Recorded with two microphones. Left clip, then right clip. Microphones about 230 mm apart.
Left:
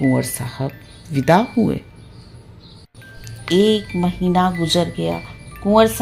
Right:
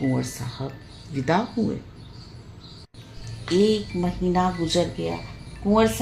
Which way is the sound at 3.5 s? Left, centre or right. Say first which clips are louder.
Left 5 dB; left.